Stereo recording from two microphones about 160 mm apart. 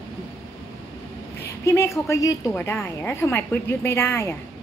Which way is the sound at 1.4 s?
20° left (ahead or behind).